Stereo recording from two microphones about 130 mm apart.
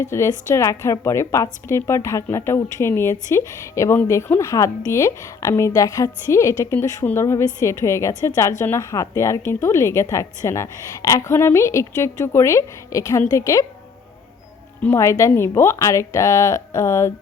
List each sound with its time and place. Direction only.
0.0 s speech: 20° left (ahead or behind)
14.9 s speech: 25° left (ahead or behind)